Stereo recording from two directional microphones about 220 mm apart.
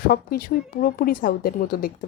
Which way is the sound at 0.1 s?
40° left (ahead or behind).